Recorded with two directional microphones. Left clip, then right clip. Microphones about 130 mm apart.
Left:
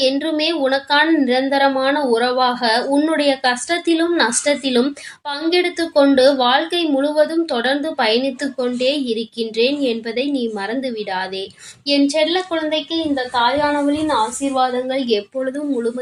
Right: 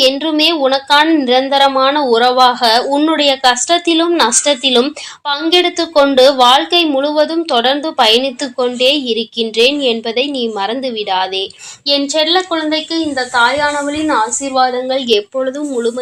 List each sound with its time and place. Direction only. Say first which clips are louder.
0.0 s a woman's voice: right 6 dB; 30° right (ahead or behind)